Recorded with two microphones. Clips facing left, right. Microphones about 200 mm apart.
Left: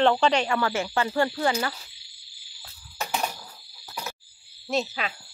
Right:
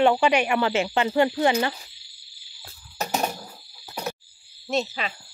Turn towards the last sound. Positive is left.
turn(degrees=0)  # may be behind; listen again after turning